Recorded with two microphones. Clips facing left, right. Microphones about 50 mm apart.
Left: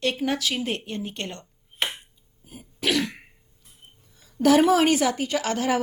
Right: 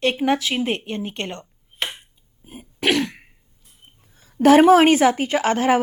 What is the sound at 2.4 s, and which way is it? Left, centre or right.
Throat clearing, right.